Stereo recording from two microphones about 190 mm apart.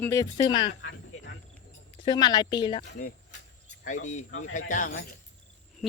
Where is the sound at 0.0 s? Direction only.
15° left (ahead or behind).